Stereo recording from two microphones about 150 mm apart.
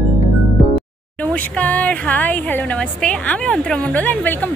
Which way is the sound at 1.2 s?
10° left (ahead or behind).